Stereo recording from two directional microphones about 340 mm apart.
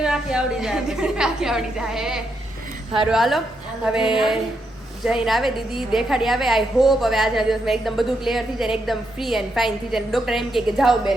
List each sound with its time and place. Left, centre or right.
0.0 s a woman's voice: centre